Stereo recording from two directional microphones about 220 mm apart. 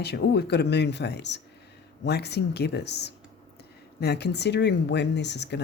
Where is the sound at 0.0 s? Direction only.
50° left (ahead or behind).